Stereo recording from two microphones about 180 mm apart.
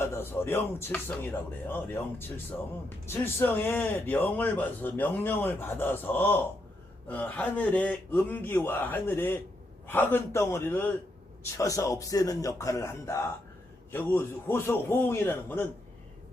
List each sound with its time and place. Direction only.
0.0 s a man's voice: 15° left (ahead or behind)